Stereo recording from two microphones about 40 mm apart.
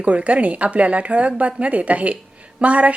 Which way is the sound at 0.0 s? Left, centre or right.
Right.